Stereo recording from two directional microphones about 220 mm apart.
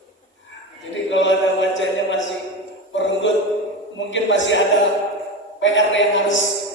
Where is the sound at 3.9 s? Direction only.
55° left (ahead or behind).